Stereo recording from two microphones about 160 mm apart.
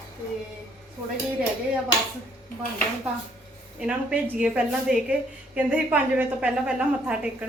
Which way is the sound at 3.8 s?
5° right (ahead or behind).